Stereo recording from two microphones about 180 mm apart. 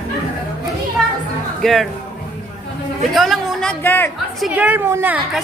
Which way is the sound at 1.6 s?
Centre (ahead or behind).